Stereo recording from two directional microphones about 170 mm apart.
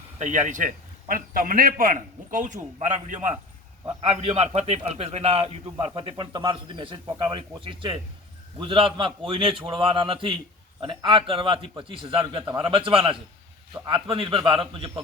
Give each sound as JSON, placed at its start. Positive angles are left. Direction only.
{"t": 0.2, "sound": "a man's voice", "side_deg": -45}